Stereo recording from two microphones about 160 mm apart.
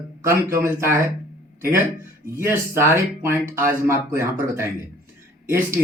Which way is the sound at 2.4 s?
15° right (ahead or behind).